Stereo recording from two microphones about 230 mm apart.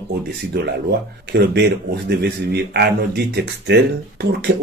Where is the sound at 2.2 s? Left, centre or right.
Right.